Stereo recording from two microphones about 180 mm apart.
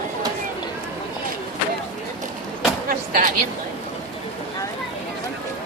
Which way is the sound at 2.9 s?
50° right (ahead or behind).